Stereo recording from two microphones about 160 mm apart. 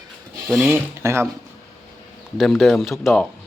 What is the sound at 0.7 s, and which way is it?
Speech, 15° right (ahead or behind).